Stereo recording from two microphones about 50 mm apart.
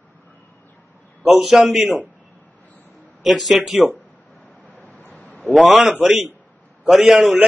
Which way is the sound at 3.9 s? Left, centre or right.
Left.